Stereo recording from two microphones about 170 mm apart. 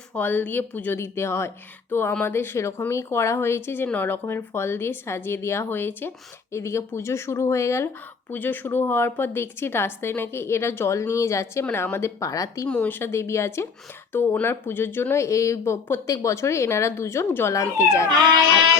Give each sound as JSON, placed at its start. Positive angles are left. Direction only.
{"t": 0.1, "sound": "speech", "side_deg": 10}
{"t": 12.6, "sound": "speech", "side_deg": 10}